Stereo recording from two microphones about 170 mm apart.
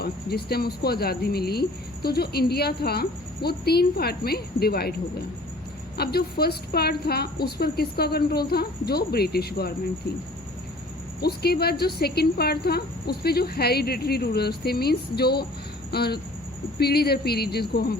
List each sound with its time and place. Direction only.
0.0 s speech: 70° left (ahead or behind)
6.0 s speech: 65° left (ahead or behind)
11.2 s speech: 70° left (ahead or behind)